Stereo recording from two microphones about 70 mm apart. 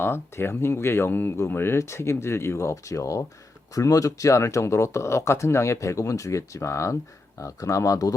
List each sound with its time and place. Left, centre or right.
0.0 s speech: left